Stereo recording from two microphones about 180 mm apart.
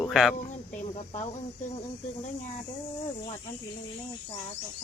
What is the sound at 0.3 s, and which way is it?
Cricket, 45° left (ahead or behind).